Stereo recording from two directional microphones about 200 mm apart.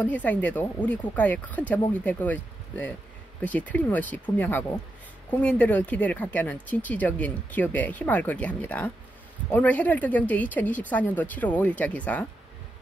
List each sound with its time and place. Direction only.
0.0 s speech: 10° left (ahead or behind)